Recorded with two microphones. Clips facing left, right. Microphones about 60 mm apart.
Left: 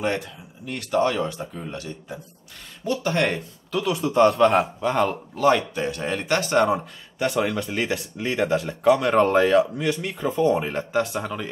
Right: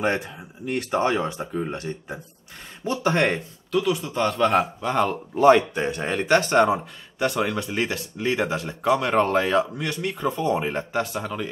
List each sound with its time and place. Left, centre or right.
0.0 s speech: right
3.9 s speech: left
4.3 s speech: centre
5.3 s speech: centre